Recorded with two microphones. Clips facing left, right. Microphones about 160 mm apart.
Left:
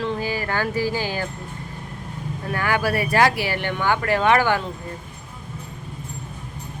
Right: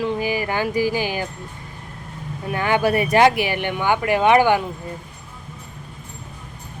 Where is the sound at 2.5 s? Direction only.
20° right (ahead or behind).